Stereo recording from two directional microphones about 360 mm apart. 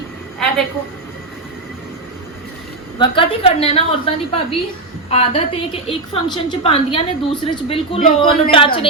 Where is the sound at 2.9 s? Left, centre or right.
Centre.